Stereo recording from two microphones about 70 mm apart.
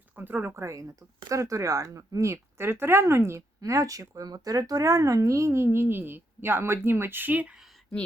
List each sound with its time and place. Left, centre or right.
0.2 s speech: right
0.5 s speech: right
3.6 s speech: right